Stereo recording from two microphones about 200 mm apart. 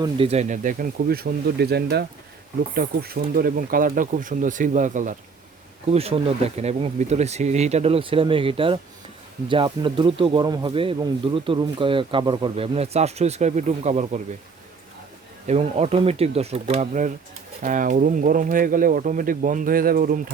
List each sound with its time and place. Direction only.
0.0 s speech: 30° right (ahead or behind)
15.4 s speech: 30° right (ahead or behind)